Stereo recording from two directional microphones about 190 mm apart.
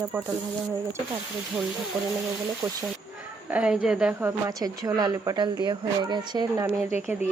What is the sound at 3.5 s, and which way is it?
Speech, 5° right (ahead or behind).